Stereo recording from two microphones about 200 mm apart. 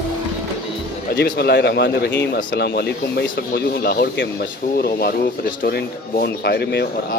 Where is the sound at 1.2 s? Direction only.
55° left (ahead or behind).